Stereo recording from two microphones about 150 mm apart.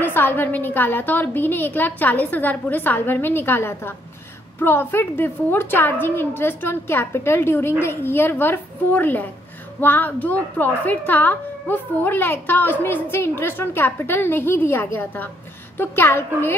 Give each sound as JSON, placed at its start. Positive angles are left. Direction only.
{"t": 0.0, "sound": "a woman's voice", "side_deg": 15}